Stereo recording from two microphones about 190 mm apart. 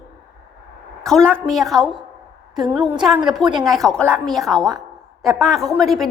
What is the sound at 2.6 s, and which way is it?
Speech, 20° right (ahead or behind).